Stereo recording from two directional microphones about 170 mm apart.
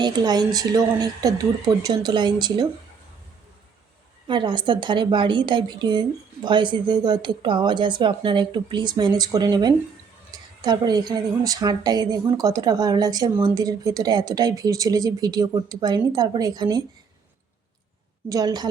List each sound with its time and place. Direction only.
0.0 s a woman's voice: 25° right (ahead or behind)
4.3 s a woman's voice: 30° right (ahead or behind)
18.3 s a woman's voice: 20° right (ahead or behind)